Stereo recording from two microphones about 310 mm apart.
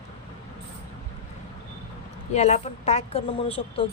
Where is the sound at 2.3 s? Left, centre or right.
Left.